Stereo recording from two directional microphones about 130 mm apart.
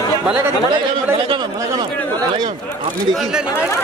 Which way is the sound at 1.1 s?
35° right (ahead or behind).